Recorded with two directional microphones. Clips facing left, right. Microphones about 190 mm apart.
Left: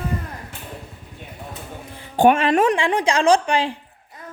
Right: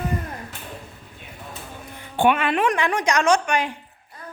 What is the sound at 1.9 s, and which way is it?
Speech, 40° left (ahead or behind).